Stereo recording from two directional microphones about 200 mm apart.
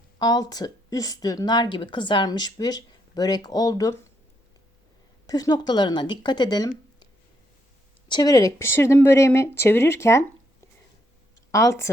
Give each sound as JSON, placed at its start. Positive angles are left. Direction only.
{"t": 0.2, "sound": "a woman's voice", "side_deg": 20}
{"t": 5.2, "sound": "speech", "side_deg": 20}
{"t": 11.5, "sound": "speech", "side_deg": 15}